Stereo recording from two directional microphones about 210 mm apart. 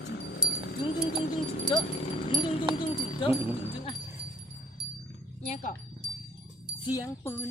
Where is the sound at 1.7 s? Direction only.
25° left (ahead or behind).